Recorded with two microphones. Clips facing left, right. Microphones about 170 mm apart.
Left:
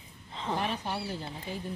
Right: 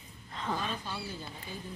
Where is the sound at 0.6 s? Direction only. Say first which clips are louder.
Left 5 dB; 70° left (ahead or behind).